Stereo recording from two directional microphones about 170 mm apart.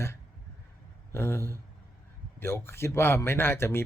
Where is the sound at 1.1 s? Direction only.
15° left (ahead or behind).